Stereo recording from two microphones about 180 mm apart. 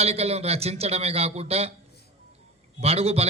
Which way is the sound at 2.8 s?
35° right (ahead or behind).